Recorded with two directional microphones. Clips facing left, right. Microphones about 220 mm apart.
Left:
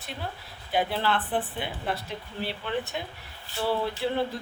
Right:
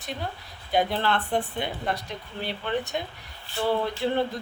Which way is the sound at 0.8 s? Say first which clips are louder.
Right 2 dB; 5° left (ahead or behind).